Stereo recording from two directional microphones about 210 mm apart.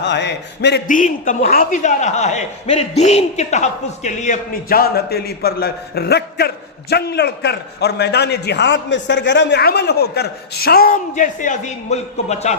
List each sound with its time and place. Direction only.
0.0 s a man's voice: 55° left (ahead or behind)
0.9 s a man's voice: 40° left (ahead or behind)